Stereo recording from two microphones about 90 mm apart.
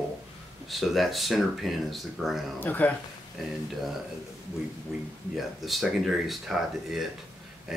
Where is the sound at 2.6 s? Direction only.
20° left (ahead or behind).